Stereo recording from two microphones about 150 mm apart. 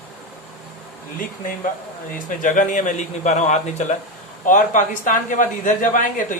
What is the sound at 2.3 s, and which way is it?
A man's voice, 60° left (ahead or behind).